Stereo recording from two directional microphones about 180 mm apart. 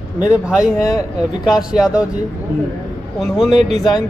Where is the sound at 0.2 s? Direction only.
5° right (ahead or behind).